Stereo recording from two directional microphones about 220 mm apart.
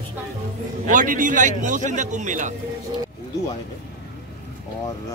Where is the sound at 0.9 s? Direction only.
35° right (ahead or behind).